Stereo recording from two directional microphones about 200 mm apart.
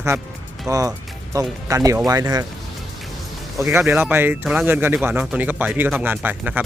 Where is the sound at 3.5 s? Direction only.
15° right (ahead or behind).